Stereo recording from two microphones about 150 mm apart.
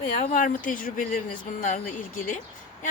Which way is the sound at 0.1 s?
60° left (ahead or behind).